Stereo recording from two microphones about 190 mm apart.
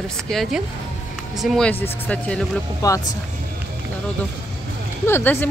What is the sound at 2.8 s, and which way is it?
Speech, 15° left (ahead or behind).